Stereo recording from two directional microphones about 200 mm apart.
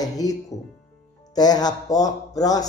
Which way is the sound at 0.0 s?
20° left (ahead or behind).